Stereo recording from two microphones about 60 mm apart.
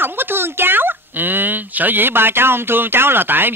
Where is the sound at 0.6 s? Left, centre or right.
Right.